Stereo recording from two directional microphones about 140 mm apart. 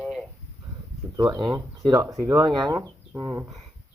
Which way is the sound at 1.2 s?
30° right (ahead or behind).